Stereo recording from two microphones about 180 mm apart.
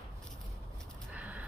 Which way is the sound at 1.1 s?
10° right (ahead or behind).